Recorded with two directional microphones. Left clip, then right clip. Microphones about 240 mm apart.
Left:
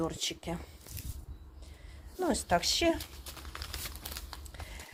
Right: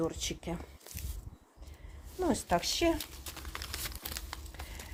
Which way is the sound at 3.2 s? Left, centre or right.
Right.